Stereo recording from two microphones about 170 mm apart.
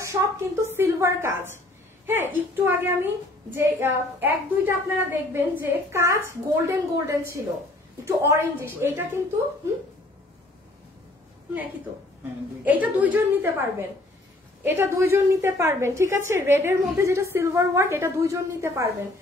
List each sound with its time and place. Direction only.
0.0 s a woman's voice: 15° right (ahead or behind)
12.6 s a woman's voice: 10° right (ahead or behind)